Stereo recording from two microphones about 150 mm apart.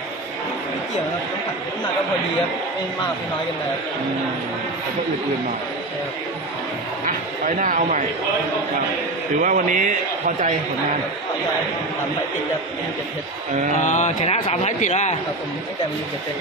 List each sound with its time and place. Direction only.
7.1 s a man's voice: 65° right (ahead or behind)
9.4 s a man's voice: 60° right (ahead or behind)
13.8 s speech: 50° left (ahead or behind)